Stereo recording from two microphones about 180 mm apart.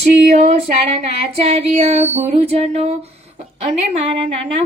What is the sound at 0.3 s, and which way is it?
Female singing, 40° right (ahead or behind).